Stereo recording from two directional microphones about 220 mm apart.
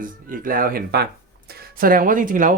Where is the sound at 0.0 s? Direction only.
40° right (ahead or behind).